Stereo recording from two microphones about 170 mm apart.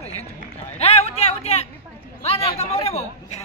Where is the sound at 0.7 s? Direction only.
40° left (ahead or behind).